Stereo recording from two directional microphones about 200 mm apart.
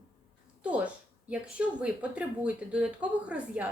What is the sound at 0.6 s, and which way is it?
Speech, 5° right (ahead or behind).